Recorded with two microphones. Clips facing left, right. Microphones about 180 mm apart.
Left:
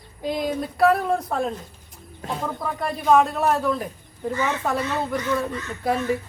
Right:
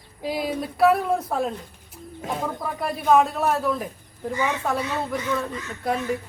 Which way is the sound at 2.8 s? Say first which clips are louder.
Even; 5° right (ahead or behind).